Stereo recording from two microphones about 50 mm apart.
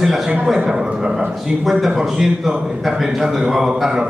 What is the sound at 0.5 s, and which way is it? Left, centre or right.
A man's voice, centre.